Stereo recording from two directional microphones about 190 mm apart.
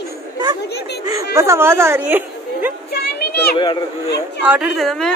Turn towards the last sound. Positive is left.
turn(degrees=0)  # may be behind; listen again after turning